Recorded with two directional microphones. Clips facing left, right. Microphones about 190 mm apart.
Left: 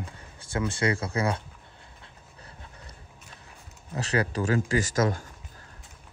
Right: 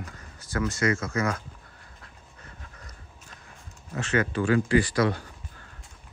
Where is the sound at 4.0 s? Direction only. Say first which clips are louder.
Right 1 dB; 35° left (ahead or behind).